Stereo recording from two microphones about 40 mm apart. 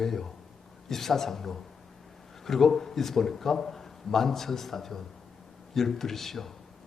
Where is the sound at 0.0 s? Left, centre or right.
Centre.